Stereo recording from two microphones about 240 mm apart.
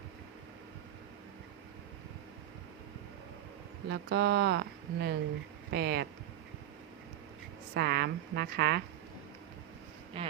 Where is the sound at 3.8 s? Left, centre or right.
Right.